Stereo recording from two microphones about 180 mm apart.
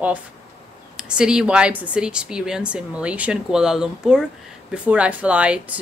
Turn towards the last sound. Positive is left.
turn(degrees=-5)  # may be behind; listen again after turning